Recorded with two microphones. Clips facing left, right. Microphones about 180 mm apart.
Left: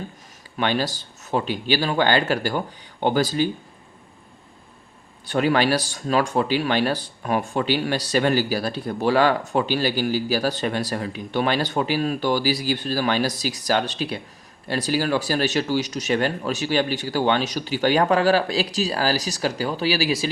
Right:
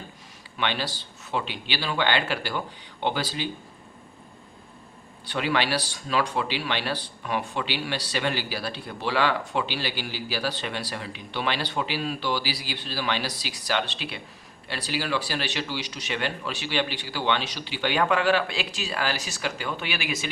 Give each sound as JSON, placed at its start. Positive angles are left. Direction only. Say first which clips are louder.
{"t": 0.5, "sound": "speech", "louder": "left 6 dB", "side_deg": 45}
{"t": 5.2, "sound": "speech", "louder": "left 6 dB", "side_deg": 45}